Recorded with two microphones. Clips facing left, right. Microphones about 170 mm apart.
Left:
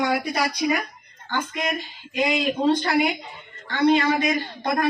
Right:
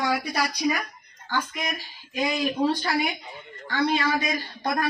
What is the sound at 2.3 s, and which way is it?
Speech, 20° left (ahead or behind).